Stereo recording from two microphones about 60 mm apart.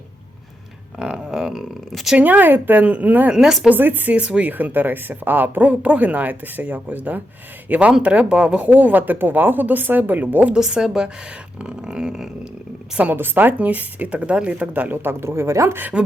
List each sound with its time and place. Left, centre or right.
0.9 s speech: centre
2.1 s speech: right
3.3 s dog: centre
3.7 s speech: right
4.1 s speech: centre
10.5 s dog: centre
13.0 s speech: right
15.8 s speech: right